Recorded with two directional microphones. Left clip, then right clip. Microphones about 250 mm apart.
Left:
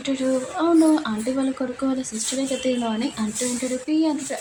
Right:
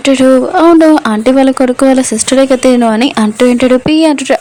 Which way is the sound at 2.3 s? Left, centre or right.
Right.